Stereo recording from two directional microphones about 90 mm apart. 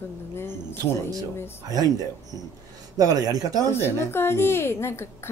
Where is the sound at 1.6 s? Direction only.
45° right (ahead or behind).